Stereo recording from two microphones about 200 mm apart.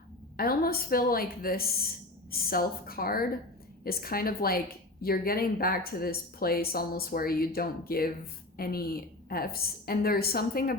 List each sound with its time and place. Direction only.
0.3 s speech: 50° left (ahead or behind)